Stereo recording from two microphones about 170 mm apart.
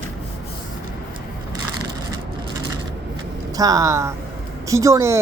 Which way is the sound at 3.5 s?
20° right (ahead or behind).